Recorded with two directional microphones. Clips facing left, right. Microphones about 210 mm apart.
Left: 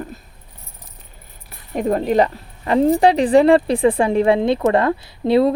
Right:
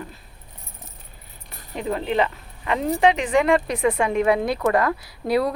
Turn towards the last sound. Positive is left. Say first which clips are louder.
# left 7 dB
turn(degrees=25)  # may be behind; listen again after turning